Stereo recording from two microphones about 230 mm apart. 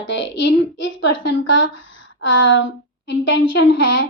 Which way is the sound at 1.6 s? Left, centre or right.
Left.